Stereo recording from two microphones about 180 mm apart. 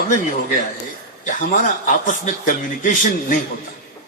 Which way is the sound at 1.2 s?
45° left (ahead or behind).